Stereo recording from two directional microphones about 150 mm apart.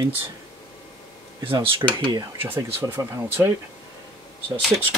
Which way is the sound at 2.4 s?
15° right (ahead or behind).